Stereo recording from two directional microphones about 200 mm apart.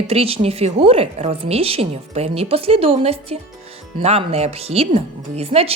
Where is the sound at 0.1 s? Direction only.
30° right (ahead or behind).